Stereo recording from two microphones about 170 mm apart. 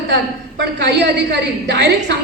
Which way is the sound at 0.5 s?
90° right.